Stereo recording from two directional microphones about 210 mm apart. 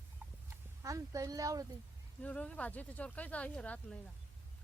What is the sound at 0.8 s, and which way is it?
Speech, 15° right (ahead or behind).